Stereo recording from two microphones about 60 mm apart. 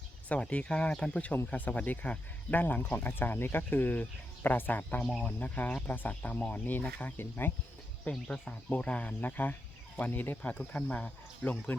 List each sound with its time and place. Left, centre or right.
0.3 s speech: left
8.3 s speech: left